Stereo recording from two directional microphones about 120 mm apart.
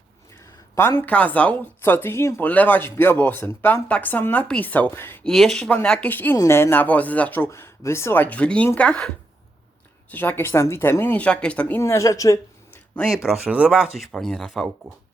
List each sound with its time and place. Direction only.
0.8 s speech: 20° left (ahead or behind)
5.2 s speech: centre (ahead or behind); by 12.4 s 30° left (ahead or behind)
13.5 s speech: 10° right (ahead or behind)